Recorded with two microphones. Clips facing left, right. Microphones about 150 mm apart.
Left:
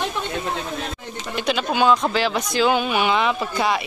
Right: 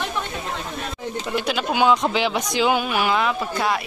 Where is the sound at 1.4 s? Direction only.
10° right (ahead or behind).